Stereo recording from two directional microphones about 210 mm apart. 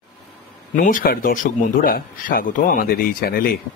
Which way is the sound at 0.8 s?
40° left (ahead or behind).